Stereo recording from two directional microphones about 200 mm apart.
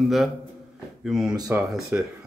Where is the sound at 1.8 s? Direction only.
Centre (ahead or behind).